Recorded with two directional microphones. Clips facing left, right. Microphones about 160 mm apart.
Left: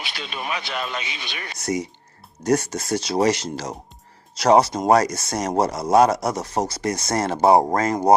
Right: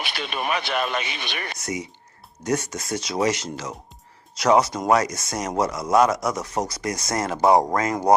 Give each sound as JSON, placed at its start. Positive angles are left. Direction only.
{"t": 0.0, "sound": "speech", "side_deg": -60}
{"t": 1.5, "sound": "speech", "side_deg": 35}